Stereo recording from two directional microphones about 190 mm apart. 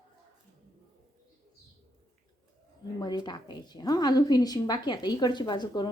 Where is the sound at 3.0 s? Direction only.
20° left (ahead or behind).